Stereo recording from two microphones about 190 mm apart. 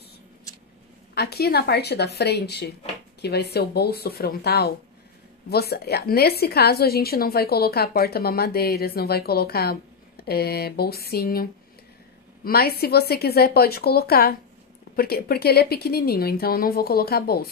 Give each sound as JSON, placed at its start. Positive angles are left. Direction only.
{"t": 1.1, "sound": "a woman's voice", "side_deg": 55}
{"t": 12.4, "sound": "a woman's voice", "side_deg": 55}